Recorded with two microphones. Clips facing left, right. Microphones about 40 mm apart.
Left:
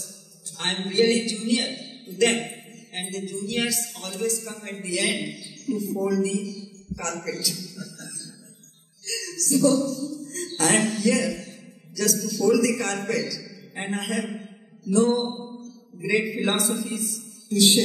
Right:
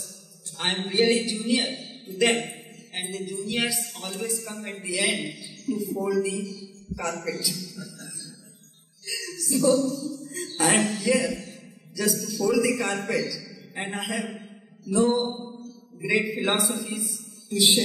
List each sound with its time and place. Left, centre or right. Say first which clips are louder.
0.6 s a man's voice: left 1 dB; centre
7.5 s a man's voice: even; centre
9.0 s a sound: left 2 dB; centre
9.6 s music: even; centre
10.6 s a man's voice: left 1 dB; centre
13.4 s music: even; centre
15.6 s a man's voice: left 1 dB; centre